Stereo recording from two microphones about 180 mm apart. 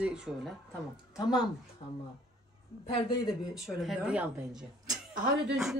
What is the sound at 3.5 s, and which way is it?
Speech, centre (ahead or behind).